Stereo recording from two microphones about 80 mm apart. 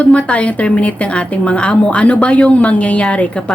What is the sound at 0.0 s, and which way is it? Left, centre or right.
Speech, centre.